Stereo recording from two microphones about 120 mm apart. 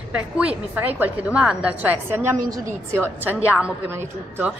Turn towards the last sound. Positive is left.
turn(degrees=-15)  # may be behind; listen again after turning